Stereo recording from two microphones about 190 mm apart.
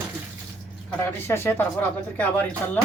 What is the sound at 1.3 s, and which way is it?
Speech, 10° left (ahead or behind).